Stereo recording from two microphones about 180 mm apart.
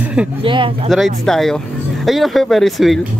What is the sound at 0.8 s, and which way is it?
Speech, centre (ahead or behind).